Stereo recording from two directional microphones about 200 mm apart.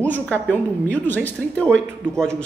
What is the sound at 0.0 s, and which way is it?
A man's voice, 10° left (ahead or behind).